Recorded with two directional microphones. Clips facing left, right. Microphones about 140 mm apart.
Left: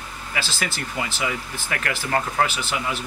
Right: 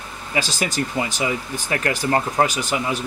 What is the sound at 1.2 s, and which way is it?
Speech, 30° right (ahead or behind).